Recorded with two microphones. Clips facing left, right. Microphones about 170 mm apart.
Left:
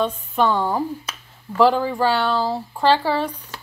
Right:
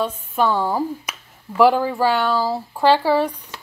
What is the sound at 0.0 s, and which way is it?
Speech, 5° right (ahead or behind).